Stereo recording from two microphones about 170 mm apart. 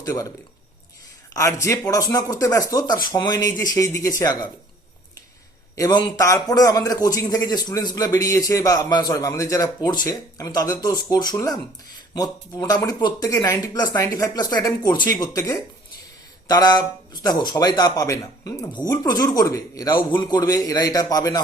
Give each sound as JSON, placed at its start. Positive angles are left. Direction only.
{"t": 0.0, "sound": "a man's voice", "side_deg": 20}
{"t": 5.7, "sound": "a man's voice", "side_deg": 25}